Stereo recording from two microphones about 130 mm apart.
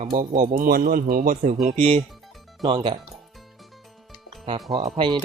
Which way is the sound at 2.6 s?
40° right (ahead or behind).